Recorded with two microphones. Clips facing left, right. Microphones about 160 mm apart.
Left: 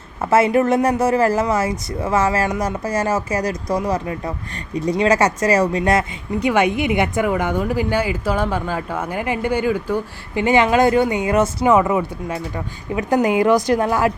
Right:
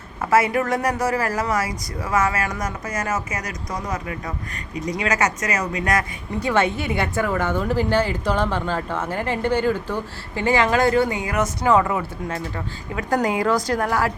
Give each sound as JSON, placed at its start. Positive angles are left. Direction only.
{"t": 0.3, "sound": "speech", "side_deg": 25}
{"t": 6.5, "sound": "a woman's voice", "side_deg": 15}